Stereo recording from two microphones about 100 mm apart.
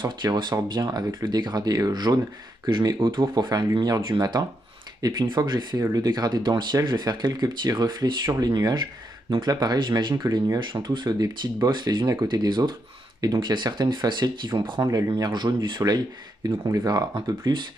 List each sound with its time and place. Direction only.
0.0 s speech: 45° right (ahead or behind)
0.8 s speech: 35° right (ahead or behind)
3.0 s speech: 50° right (ahead or behind)